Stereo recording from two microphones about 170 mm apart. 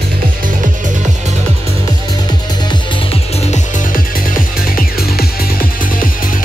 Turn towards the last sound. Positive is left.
turn(degrees=55)  # may be behind; listen again after turning